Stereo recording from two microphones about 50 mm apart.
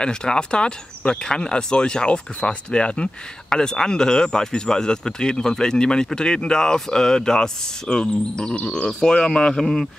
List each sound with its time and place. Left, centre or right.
0.0 s speech: centre
8.8 s speech: centre